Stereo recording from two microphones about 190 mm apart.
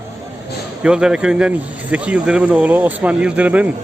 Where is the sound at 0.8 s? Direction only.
5° right (ahead or behind).